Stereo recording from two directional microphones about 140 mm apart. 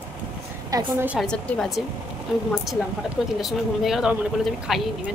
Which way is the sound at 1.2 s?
5° left (ahead or behind).